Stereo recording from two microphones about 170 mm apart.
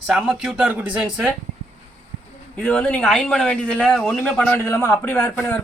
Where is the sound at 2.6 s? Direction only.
5° left (ahead or behind).